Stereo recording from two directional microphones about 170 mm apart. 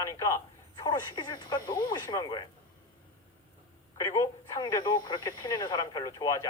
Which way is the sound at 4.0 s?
20° left (ahead or behind).